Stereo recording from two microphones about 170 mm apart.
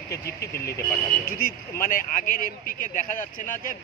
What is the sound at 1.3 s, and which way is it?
Speech, 60° left (ahead or behind).